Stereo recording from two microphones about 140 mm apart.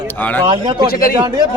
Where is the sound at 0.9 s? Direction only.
90° left.